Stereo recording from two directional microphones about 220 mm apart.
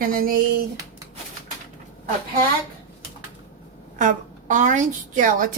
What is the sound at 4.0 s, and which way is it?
A woman's voice, 35° right (ahead or behind).